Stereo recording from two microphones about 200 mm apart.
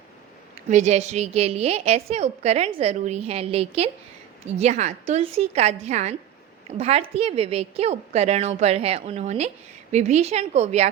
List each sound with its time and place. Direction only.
0.7 s a woman's voice: 35° right (ahead or behind)